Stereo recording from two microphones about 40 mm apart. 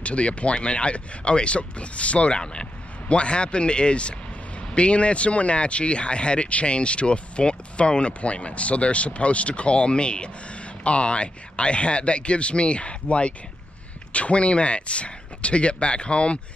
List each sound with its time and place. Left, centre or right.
0.0 s speech: left